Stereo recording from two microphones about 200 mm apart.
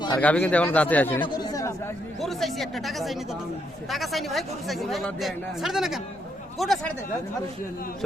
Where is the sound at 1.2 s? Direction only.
20° left (ahead or behind).